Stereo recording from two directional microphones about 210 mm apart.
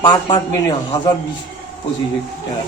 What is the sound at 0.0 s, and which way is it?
Speech, 20° left (ahead or behind).